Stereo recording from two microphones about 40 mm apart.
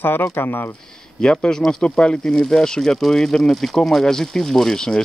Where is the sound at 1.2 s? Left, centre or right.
Centre.